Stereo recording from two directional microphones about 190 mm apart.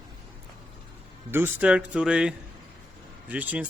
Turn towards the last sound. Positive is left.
turn(degrees=-10)  # may be behind; listen again after turning